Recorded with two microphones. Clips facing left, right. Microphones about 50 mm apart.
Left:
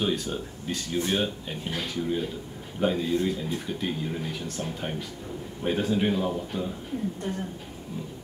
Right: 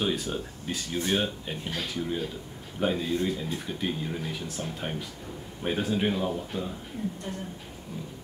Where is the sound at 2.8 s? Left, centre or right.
Centre.